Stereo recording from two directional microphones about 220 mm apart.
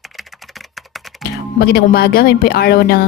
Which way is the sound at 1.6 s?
45° left (ahead or behind).